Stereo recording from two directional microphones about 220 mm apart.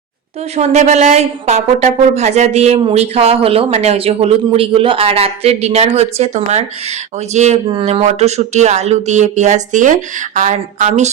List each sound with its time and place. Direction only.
0.5 s a woman's voice: 30° right (ahead or behind)